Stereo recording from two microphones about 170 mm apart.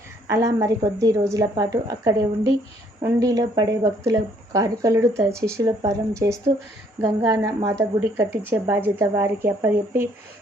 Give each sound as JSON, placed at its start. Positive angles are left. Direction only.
{"t": 0.3, "sound": "a woman's voice", "side_deg": -20}